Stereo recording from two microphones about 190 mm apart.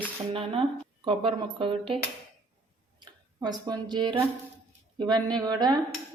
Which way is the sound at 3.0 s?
20° right (ahead or behind).